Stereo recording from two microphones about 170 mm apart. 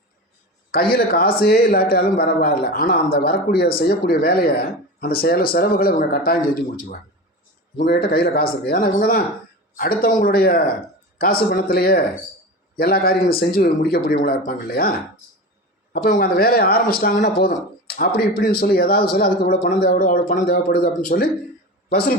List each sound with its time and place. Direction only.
0.7 s speech: 65° left (ahead or behind)
7.8 s speech: 60° left (ahead or behind)
16.0 s speech: 60° left (ahead or behind)